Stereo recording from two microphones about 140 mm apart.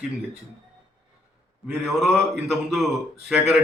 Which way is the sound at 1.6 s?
Centre (ahead or behind).